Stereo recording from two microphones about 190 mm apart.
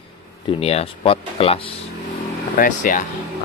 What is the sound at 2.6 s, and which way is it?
Speech, 45° left (ahead or behind).